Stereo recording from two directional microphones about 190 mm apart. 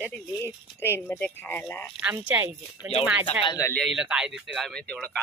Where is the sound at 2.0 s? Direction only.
10° right (ahead or behind).